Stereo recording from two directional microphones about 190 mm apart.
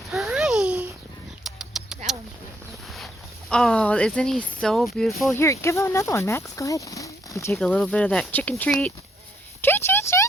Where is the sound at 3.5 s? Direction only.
5° left (ahead or behind).